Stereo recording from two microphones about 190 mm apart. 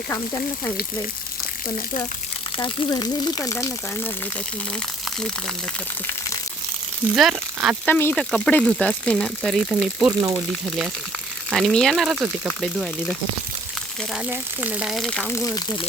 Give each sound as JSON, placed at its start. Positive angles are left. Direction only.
{"t": 2.6, "sound": "speech", "side_deg": 25}
{"t": 7.2, "sound": "speech", "side_deg": -5}
{"t": 7.9, "sound": "speech", "side_deg": 10}
{"t": 10.2, "sound": "speech", "side_deg": -20}
{"t": 10.5, "sound": "speech", "side_deg": 0}